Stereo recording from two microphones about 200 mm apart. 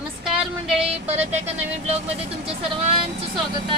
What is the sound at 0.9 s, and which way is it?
Speech, 30° right (ahead or behind).